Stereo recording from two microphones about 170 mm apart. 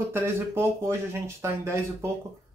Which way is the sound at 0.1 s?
15° right (ahead or behind).